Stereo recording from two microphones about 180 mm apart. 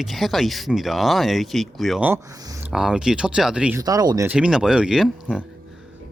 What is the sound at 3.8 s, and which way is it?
Speech, 20° right (ahead or behind).